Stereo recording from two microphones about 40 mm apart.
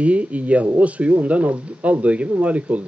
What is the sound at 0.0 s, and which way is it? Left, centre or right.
Speech, right.